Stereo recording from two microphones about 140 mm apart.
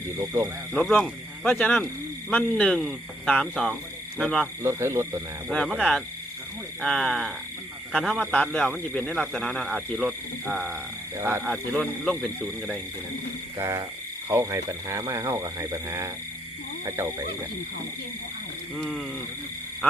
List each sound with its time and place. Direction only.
0.2 s speech: 20° right (ahead or behind)
0.7 s a man's voice: 5° left (ahead or behind)
4.6 s speech: 20° right (ahead or behind)
5.5 s a man's voice: 5° left (ahead or behind)
11.2 s speech: 15° right (ahead or behind)
11.4 s a man's voice: centre (ahead or behind)
13.6 s speech: 20° right (ahead or behind)
18.8 s a man's voice: centre (ahead or behind)